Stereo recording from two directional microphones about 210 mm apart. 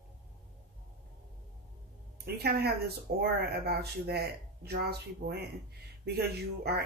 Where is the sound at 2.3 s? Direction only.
50° right (ahead or behind).